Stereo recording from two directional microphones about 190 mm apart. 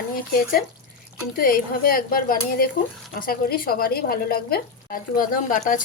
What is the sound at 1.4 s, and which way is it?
Speech, 50° left (ahead or behind).